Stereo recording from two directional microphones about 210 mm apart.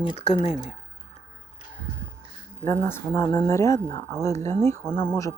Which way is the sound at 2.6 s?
10° left (ahead or behind).